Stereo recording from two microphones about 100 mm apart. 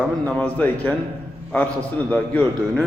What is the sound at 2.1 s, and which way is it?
Speech, 10° left (ahead or behind).